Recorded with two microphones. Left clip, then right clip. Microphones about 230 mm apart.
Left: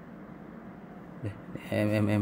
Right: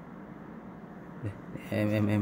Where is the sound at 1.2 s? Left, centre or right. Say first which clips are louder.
Left 2 dB; centre.